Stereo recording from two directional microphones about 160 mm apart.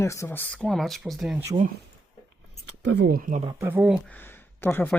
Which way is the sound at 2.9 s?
75° right (ahead or behind).